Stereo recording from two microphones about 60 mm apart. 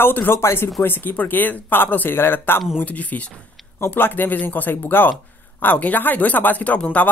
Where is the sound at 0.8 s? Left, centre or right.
Left.